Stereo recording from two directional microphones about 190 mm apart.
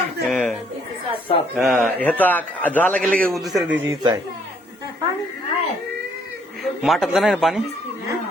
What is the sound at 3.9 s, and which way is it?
Speech, 20° right (ahead or behind).